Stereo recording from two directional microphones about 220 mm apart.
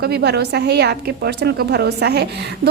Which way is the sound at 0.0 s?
45° right (ahead or behind).